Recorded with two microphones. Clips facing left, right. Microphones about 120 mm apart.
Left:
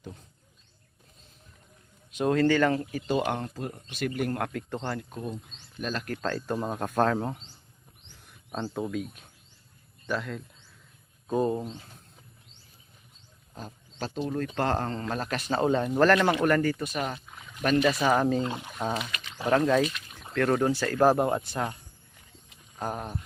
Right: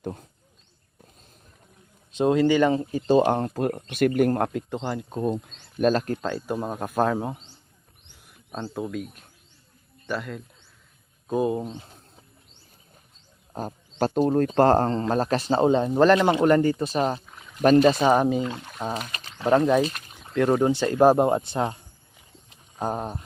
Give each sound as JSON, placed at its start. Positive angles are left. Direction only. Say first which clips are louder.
{"t": 0.0, "sound": "wild animals", "louder": "right 10 dB", "side_deg": -55}
{"t": 2.1, "sound": "speech", "louder": "right 4 dB", "side_deg": -20}
{"t": 3.1, "sound": "speech", "louder": "right 9 dB", "side_deg": -30}
{"t": 3.5, "sound": "speech", "louder": "right 10 dB", "side_deg": -65}
{"t": 4.5, "sound": "speech", "louder": "right 4 dB", "side_deg": -15}
{"t": 5.2, "sound": "speech", "louder": "right 10 dB", "side_deg": -55}
{"t": 6.3, "sound": "speech", "louder": "right 2 dB", "side_deg": -5}
{"t": 13.5, "sound": "a sound", "louder": "right 10 dB", "side_deg": -50}
{"t": 14.3, "sound": "speech", "louder": "right 9 dB", "side_deg": -40}
{"t": 18.6, "sound": "speech", "louder": "even", "side_deg": 0}
{"t": 18.9, "sound": "speech", "louder": "right 1 dB", "side_deg": -40}
{"t": 19.5, "sound": "speech", "louder": "right 4 dB", "side_deg": -20}
{"t": 22.8, "sound": "speech", "louder": "right 5 dB", "side_deg": -25}